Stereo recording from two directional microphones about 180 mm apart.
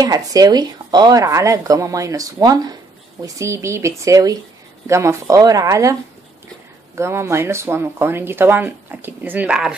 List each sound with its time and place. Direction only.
0.0 s speech: 20° right (ahead or behind)
7.0 s speech: 15° right (ahead or behind)